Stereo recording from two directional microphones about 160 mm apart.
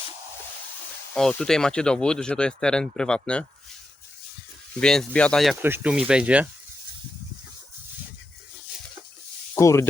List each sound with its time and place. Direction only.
1.1 s speech: 5° left (ahead or behind)
4.8 s speech: 5° left (ahead or behind)
5.6 s speech: 10° right (ahead or behind)
9.6 s speech: 20° left (ahead or behind)